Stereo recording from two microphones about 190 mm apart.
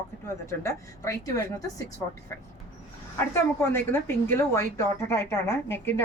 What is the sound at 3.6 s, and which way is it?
A woman's voice, 10° left (ahead or behind).